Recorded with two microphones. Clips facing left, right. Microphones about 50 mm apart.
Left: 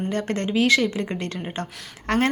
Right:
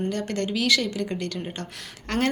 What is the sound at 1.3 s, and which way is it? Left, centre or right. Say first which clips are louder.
Speech: left 2 dB; left.